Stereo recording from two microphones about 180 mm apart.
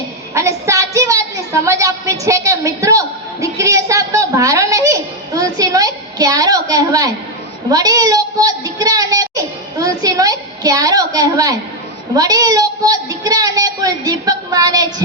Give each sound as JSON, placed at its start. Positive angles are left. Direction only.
{"t": 0.3, "sound": "a woman's voice", "side_deg": -15}